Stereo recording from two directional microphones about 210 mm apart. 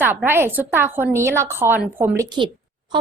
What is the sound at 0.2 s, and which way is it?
A woman's voice, 10° right (ahead or behind).